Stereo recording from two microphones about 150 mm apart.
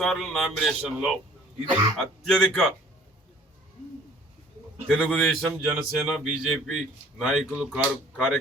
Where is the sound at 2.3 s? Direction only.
5° left (ahead or behind).